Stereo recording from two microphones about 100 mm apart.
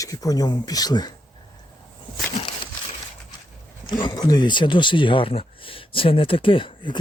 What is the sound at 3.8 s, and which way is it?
Speech, 50° left (ahead or behind).